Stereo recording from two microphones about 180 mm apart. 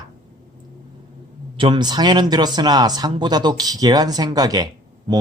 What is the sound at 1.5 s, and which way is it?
Speech, 25° right (ahead or behind).